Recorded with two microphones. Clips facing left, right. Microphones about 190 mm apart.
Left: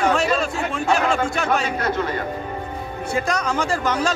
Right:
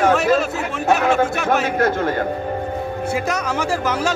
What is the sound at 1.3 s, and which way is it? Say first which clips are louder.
Speech: right 2 dB; 5° right (ahead or behind).